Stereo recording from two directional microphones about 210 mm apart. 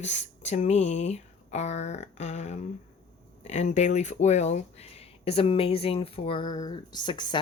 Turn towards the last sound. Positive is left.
turn(degrees=20)  # may be behind; listen again after turning